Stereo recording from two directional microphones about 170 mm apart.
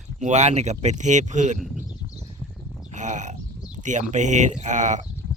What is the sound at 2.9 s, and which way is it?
Speech, 45° right (ahead or behind).